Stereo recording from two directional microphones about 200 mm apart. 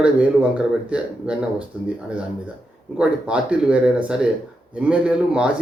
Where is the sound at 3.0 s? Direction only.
5° right (ahead or behind).